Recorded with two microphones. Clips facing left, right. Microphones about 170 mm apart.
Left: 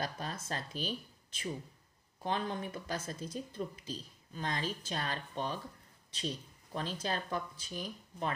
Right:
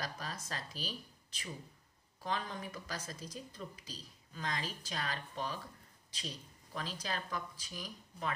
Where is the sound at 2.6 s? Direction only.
25° left (ahead or behind).